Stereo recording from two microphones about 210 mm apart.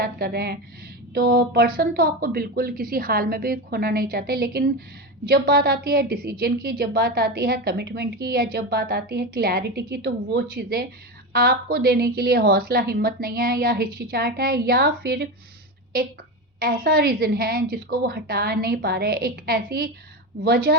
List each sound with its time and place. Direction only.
0.0 s a woman's voice: 50° right (ahead or behind)
16.6 s a woman's voice: 45° right (ahead or behind)